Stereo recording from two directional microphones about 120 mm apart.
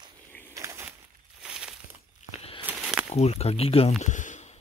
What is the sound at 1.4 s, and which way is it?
Crumpling, 5° right (ahead or behind).